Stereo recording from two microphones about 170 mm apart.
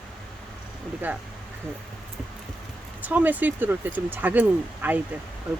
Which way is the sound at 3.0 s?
10° right (ahead or behind).